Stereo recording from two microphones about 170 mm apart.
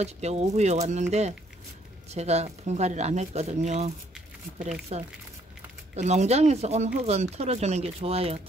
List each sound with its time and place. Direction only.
0.0 s speech: 40° right (ahead or behind)
2.1 s speech: 40° right (ahead or behind)